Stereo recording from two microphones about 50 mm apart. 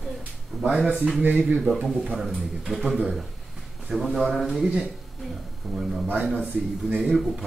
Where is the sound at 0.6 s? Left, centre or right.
Centre.